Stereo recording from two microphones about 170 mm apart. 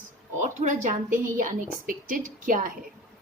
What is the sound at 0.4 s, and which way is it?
A woman's voice, 45° right (ahead or behind).